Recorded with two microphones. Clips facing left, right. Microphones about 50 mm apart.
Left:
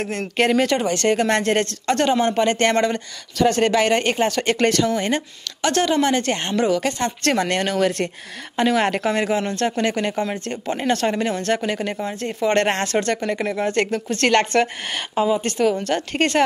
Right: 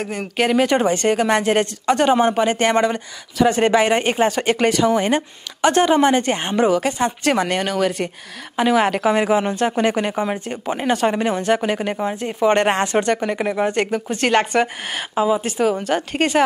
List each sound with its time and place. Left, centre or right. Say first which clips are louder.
0.0 s speech: even; centre
0.7 s speech: right 3 dB; right
1.0 s speech: right 1 dB; centre